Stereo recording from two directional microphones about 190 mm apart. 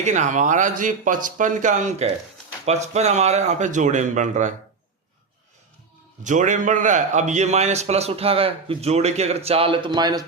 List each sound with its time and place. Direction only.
0.0 s a man's voice: 40° right (ahead or behind)
6.2 s a man's voice: 40° right (ahead or behind); by 10.2 s 20° right (ahead or behind)